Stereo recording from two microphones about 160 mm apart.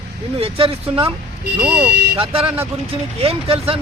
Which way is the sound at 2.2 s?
35° right (ahead or behind).